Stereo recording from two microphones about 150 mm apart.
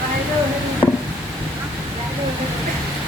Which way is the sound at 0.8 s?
30° left (ahead or behind).